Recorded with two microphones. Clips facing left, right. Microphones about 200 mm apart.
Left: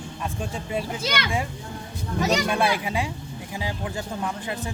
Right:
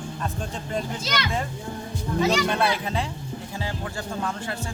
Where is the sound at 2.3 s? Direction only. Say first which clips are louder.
Even; 10° left (ahead or behind).